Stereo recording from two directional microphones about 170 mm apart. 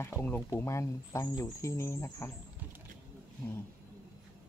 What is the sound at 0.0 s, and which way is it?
Speech, 10° left (ahead or behind).